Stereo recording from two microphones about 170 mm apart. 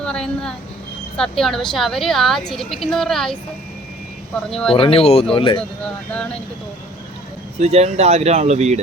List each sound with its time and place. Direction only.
0.0 s speech: 5° left (ahead or behind)
4.7 s speech: 35° left (ahead or behind)
7.6 s speech: 40° right (ahead or behind)